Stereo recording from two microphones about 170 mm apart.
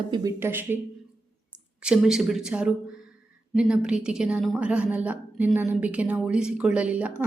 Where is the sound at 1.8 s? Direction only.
5° right (ahead or behind).